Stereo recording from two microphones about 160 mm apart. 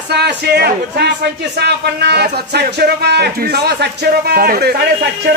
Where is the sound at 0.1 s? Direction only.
90° right; by 4.7 s 70° right (ahead or behind).